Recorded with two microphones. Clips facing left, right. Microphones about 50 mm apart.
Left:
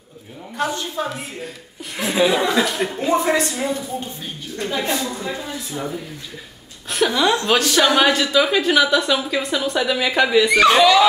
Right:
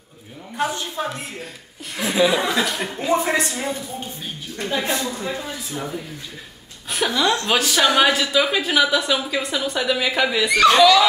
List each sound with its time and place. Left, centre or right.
0.6 s a woman's voice: centre
7.4 s a woman's voice: centre
10.6 s speech: centre